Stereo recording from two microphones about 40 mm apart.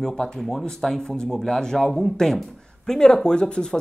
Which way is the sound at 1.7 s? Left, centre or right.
Centre.